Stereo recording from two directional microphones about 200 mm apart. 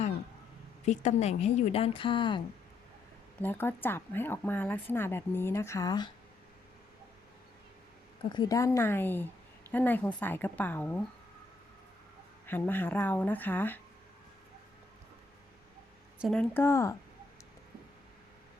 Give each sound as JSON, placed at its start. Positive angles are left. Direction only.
{"t": 0.9, "sound": "speech", "side_deg": 35}
{"t": 3.4, "sound": "a woman's voice", "side_deg": 10}
{"t": 8.3, "sound": "a woman's voice", "side_deg": 20}
{"t": 12.5, "sound": "a woman's voice", "side_deg": 10}
{"t": 16.1, "sound": "a woman's voice", "side_deg": 0}